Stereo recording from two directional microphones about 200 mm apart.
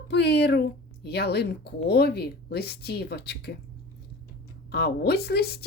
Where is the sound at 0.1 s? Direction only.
55° left (ahead or behind).